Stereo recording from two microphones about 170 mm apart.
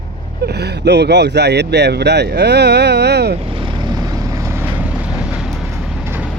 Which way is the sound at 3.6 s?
25° right (ahead or behind).